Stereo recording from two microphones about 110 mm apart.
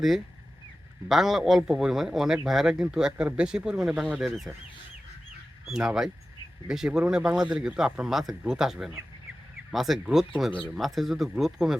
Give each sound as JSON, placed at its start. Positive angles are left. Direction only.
{"t": 1.0, "sound": "a man's voice", "side_deg": 0}
{"t": 5.6, "sound": "a man's voice", "side_deg": -5}